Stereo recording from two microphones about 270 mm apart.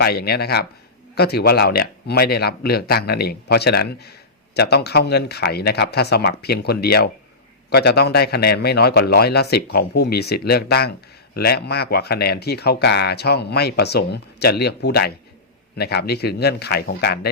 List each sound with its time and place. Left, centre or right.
0.0 s speech: left